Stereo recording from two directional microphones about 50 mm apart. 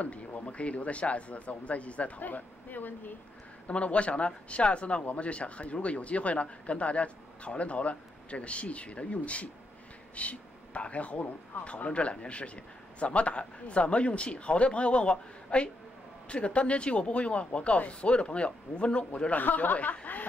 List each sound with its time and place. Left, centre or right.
0.0 s speech: left
3.6 s speech: left
19.3 s speech: left